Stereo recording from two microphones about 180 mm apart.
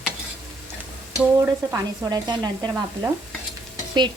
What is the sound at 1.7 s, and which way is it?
Sizzle, 20° right (ahead or behind).